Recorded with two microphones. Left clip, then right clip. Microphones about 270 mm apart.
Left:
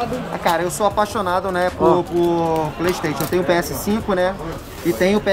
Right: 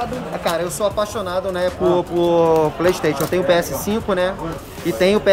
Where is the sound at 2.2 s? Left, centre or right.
Centre.